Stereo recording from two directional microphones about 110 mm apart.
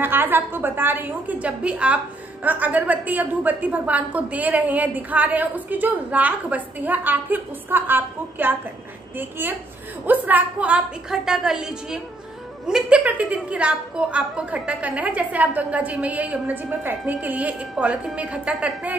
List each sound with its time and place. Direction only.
0.0 s a woman's voice: 20° right (ahead or behind)